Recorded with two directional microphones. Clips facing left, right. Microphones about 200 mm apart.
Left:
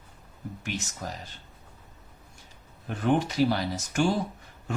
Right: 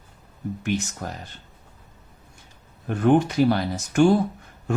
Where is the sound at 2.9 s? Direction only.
55° right (ahead or behind).